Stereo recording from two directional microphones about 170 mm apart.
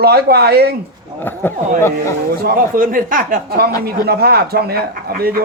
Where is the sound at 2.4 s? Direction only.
55° right (ahead or behind).